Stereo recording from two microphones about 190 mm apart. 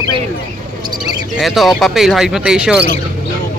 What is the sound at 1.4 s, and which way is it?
Speech, centre (ahead or behind).